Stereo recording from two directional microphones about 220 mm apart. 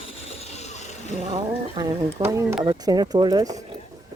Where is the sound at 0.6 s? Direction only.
30° left (ahead or behind).